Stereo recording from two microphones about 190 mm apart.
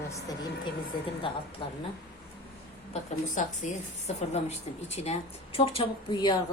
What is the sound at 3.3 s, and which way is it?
A woman's voice, 40° left (ahead or behind).